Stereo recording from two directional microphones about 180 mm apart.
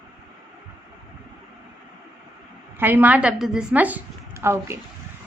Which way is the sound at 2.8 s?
10° right (ahead or behind).